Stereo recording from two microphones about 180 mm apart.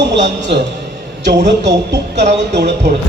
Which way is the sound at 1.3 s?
75° right (ahead or behind).